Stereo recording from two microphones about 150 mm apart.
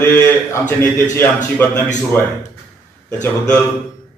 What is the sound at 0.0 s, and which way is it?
A man's voice, 15° left (ahead or behind).